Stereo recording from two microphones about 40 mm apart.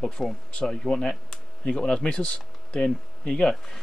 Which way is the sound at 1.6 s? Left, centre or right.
Left.